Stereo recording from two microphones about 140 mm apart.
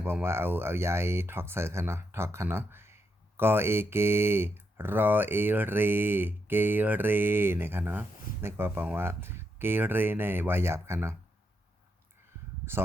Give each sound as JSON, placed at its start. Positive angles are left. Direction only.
{"t": 0.0, "sound": "speech", "side_deg": -15}